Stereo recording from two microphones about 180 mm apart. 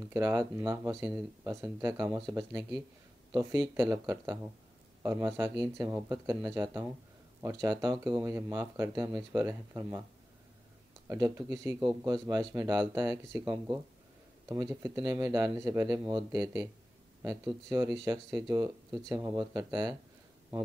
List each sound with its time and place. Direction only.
0.1 s speech: 20° right (ahead or behind)
3.3 s speech: 20° right (ahead or behind)
11.1 s speech: 15° right (ahead or behind)